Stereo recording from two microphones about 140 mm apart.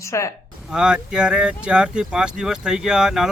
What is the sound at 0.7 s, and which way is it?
Speech, 5° right (ahead or behind).